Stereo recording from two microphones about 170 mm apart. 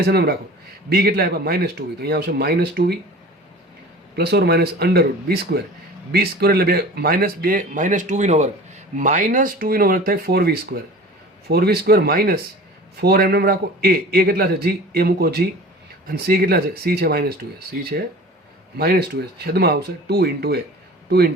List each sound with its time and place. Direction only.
0.0 s speech: 70° right (ahead or behind)
4.1 s speech: 70° right (ahead or behind)